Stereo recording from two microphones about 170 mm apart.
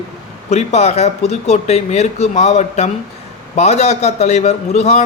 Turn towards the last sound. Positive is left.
turn(degrees=40)  # may be behind; listen again after turning